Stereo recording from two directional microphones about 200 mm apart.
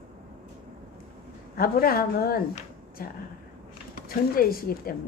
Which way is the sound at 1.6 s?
50° left (ahead or behind).